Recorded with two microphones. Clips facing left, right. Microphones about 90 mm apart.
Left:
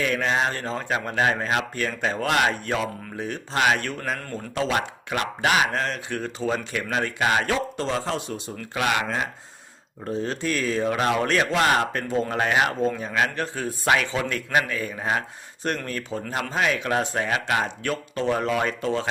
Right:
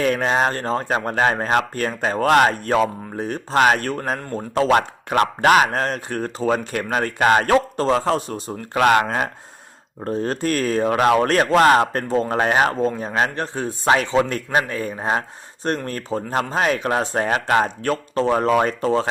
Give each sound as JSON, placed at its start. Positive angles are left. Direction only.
{"t": 0.0, "sound": "speech", "side_deg": -40}